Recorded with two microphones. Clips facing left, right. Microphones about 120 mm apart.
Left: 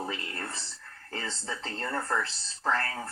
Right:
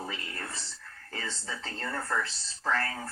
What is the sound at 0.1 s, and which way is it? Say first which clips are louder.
Whispering: left 3 dB; 30° left (ahead or behind).